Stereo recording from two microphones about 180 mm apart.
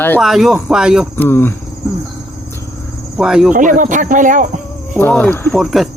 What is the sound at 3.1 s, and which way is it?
Speech, 5° right (ahead or behind).